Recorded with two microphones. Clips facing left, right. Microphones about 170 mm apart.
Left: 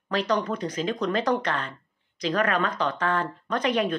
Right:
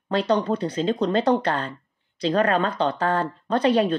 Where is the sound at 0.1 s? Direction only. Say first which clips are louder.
Right 4 dB; 30° right (ahead or behind).